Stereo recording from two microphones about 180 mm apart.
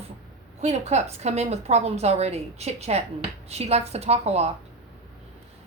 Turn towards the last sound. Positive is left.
turn(degrees=-35)  # may be behind; listen again after turning